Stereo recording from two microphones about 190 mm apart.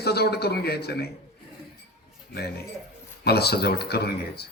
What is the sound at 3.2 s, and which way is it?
A man's voice, 55° left (ahead or behind).